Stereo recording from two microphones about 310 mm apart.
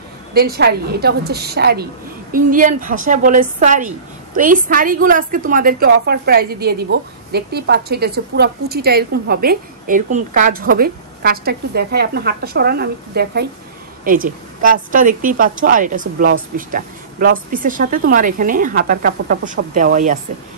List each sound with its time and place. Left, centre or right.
0.3 s a woman's voice: right